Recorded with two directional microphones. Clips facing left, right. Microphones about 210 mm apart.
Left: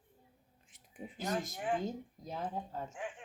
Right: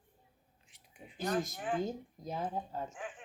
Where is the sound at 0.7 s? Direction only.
50° left (ahead or behind).